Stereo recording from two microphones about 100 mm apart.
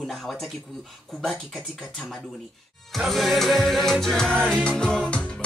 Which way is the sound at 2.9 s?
Centre (ahead or behind).